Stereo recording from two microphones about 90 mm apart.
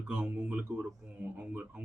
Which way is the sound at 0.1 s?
15° right (ahead or behind).